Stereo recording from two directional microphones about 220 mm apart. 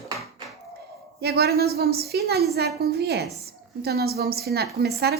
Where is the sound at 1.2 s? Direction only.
45° right (ahead or behind).